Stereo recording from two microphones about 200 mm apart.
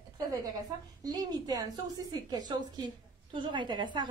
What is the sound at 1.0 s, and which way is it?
A woman's voice, 20° right (ahead or behind).